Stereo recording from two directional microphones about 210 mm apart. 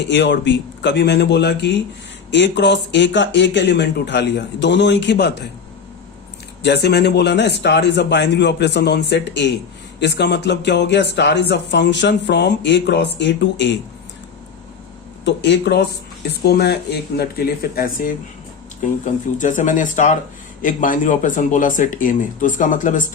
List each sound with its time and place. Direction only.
0.1 s speech: 55° left (ahead or behind)
6.6 s speech: 50° left (ahead or behind)
15.2 s speech: 55° left (ahead or behind); by 23.0 s 40° left (ahead or behind)